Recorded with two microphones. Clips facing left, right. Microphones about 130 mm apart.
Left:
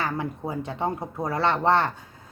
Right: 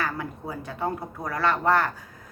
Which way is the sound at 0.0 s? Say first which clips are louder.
Left 2 dB; 25° left (ahead or behind).